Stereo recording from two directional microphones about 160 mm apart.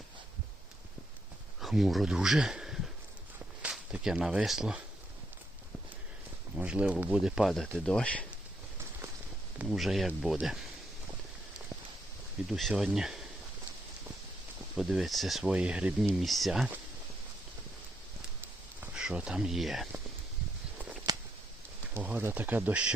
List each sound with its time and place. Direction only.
1.6 s speech: centre (ahead or behind)
6.6 s speech: 5° right (ahead or behind)
9.6 s speech: centre (ahead or behind)
12.5 s speech: centre (ahead or behind)
14.8 s speech: centre (ahead or behind)
18.8 s speech: 5° right (ahead or behind)
21.1 s a sound: 25° right (ahead or behind)
21.9 s speech: 10° right (ahead or behind)